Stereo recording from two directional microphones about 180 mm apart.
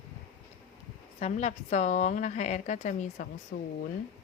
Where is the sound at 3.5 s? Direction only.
60° left (ahead or behind).